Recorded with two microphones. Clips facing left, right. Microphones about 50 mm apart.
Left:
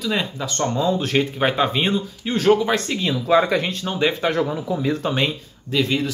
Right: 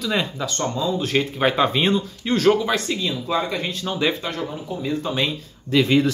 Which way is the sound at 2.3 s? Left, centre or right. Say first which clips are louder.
Left 1 dB; left.